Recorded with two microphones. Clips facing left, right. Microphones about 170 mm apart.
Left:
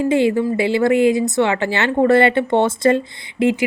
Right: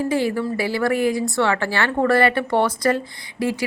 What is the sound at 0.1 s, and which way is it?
Speech, 20° left (ahead or behind).